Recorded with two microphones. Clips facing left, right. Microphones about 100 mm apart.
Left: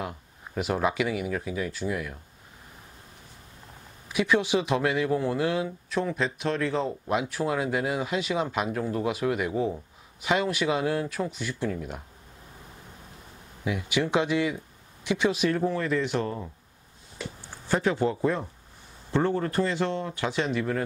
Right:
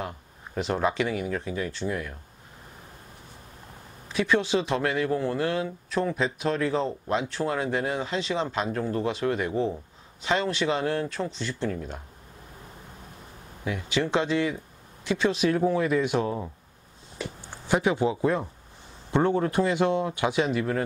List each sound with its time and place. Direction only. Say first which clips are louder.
0.6 s speech: even; 5° left (ahead or behind)
4.1 s speech: even; 15° left (ahead or behind)
5.9 s speech: right 3 dB; centre (ahead or behind)
13.7 s speech: even; 15° left (ahead or behind)
15.3 s speech: right 2 dB; 5° right (ahead or behind)
19.1 s speech: right 2 dB; 15° right (ahead or behind)